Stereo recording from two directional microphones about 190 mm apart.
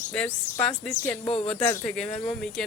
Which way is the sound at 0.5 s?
15° left (ahead or behind).